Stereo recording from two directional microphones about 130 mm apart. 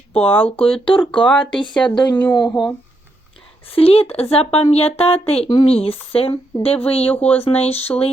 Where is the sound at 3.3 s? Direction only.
45° left (ahead or behind).